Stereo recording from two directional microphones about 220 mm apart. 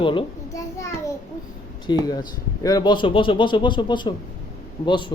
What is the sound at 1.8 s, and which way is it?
Speech, 20° left (ahead or behind).